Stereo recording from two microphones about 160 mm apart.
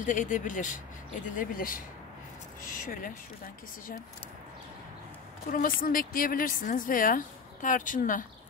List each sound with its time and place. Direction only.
0.0 s a woman's voice: 55° left (ahead or behind)
5.5 s a woman's voice: 60° left (ahead or behind)